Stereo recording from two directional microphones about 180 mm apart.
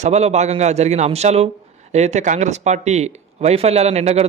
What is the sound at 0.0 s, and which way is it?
Speech, 35° right (ahead or behind).